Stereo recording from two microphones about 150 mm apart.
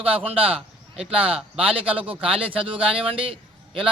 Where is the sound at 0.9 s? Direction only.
40° right (ahead or behind).